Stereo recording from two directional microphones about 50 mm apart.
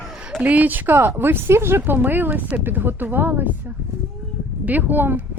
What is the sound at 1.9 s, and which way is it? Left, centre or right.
Speech, right.